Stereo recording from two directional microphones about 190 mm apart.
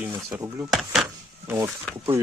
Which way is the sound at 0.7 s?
Centre (ahead or behind).